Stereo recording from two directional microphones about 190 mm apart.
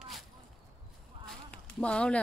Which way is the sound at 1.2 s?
5° left (ahead or behind).